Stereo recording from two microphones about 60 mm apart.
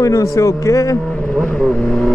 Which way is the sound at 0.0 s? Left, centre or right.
Left.